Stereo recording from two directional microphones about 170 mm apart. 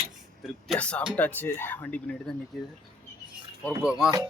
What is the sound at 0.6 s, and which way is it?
Speech, 5° left (ahead or behind).